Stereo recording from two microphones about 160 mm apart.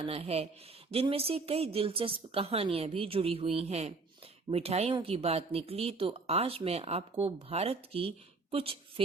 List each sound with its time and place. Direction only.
0.0 s speech: 40° right (ahead or behind)